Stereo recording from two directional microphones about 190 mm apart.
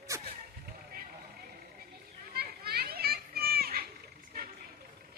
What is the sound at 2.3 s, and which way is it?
Children playing, 55° right (ahead or behind).